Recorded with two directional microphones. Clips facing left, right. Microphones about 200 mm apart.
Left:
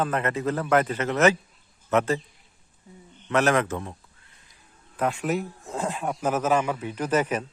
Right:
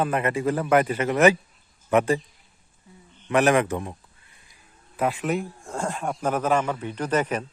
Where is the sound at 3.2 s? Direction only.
15° right (ahead or behind).